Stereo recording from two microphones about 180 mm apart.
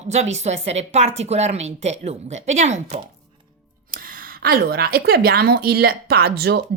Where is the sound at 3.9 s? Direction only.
50° right (ahead or behind).